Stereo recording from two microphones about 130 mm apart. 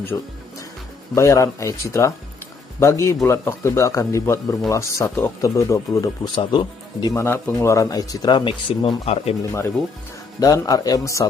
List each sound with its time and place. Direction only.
0.1 s speech: 15° left (ahead or behind)
6.3 s speech: 35° left (ahead or behind)
7.2 s speech: 20° left (ahead or behind); by 9.3 s 55° left (ahead or behind)
9.4 s speech: 20° left (ahead or behind)